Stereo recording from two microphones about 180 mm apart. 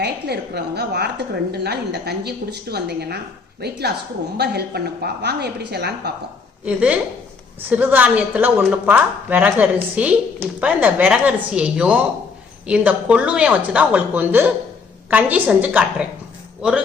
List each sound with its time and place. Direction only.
0.0 s a woman's voice: 60° right (ahead or behind)
6.7 s a woman's voice: 5° right (ahead or behind)